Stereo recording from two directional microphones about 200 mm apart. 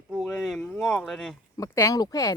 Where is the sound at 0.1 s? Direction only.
Centre (ahead or behind).